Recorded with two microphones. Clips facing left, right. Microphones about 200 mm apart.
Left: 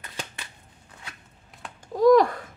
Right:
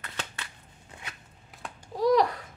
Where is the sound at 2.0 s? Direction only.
50° left (ahead or behind).